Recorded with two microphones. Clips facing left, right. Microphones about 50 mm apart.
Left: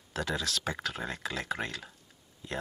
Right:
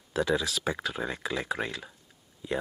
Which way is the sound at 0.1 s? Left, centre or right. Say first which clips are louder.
Right 5 dB; centre.